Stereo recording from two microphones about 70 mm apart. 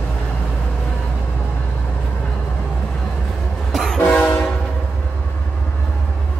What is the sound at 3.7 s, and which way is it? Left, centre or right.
Train, centre.